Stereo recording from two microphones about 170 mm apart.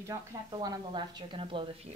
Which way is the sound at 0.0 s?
20° right (ahead or behind).